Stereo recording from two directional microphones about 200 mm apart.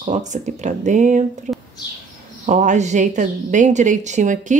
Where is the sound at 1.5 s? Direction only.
35° right (ahead or behind).